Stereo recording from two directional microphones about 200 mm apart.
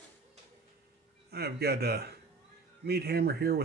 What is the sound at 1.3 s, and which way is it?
Speech, 55° right (ahead or behind).